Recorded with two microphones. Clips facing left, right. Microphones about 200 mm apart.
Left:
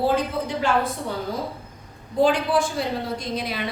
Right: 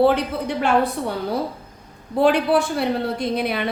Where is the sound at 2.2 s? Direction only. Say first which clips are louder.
Right 3 dB; 65° right (ahead or behind).